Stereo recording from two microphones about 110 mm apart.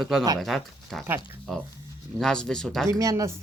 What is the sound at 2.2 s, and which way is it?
Speech, 5° left (ahead or behind).